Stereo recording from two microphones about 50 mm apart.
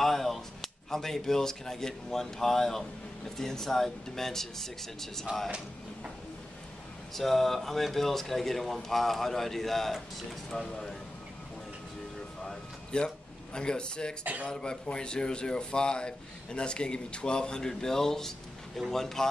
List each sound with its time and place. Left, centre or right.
0.0 s a man's voice: centre
7.2 s a man's voice: centre
12.4 s a sound: centre
14.2 s speech: right
14.5 s a man's voice: centre